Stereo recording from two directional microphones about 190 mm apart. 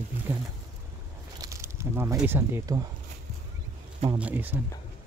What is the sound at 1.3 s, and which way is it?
Speech, 15° right (ahead or behind).